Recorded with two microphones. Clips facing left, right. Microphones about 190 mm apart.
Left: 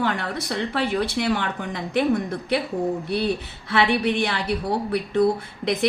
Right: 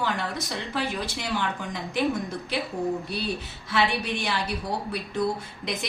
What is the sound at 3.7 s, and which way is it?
Speech, 60° left (ahead or behind).